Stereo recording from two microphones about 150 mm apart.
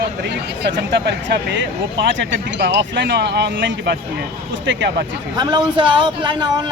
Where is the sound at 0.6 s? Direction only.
90° right.